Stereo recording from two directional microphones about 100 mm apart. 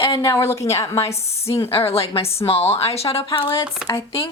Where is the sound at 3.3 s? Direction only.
60° left (ahead or behind).